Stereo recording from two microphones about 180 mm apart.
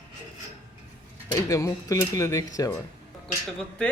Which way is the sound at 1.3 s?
20° left (ahead or behind).